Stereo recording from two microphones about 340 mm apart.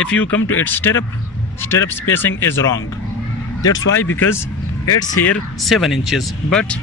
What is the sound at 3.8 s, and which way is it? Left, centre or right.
Speech, left.